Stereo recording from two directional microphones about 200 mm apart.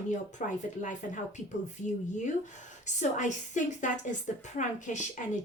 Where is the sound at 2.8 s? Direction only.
35° left (ahead or behind).